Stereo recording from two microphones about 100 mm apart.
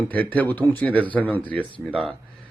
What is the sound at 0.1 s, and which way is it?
A man's voice, 20° left (ahead or behind).